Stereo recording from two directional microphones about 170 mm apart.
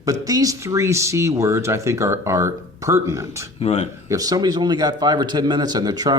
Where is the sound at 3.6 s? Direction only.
40° left (ahead or behind).